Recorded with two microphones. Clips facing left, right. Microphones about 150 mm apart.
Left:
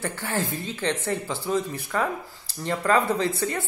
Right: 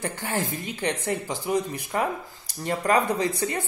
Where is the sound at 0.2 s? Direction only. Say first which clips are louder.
Left 1 dB; 15° right (ahead or behind).